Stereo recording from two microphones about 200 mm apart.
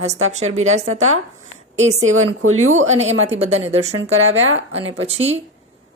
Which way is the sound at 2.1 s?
90° right.